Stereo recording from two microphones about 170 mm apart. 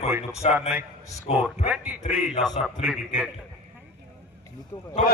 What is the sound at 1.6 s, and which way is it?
A man's voice, 10° right (ahead or behind).